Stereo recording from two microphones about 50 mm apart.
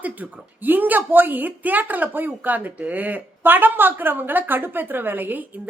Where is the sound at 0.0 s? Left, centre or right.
Right.